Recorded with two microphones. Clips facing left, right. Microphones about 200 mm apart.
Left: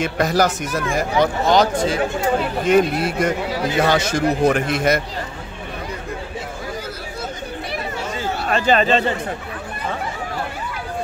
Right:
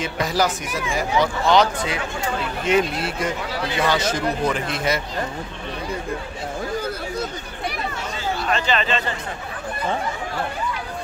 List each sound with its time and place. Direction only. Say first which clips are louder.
0.0 s speech: left 4 dB; 50° left (ahead or behind)
0.7 s speech: left 4 dB; 15° right (ahead or behind)
0.9 s speech: left 2 dB; 45° left (ahead or behind)
8.5 s speech: left 6 dB; 45° left (ahead or behind)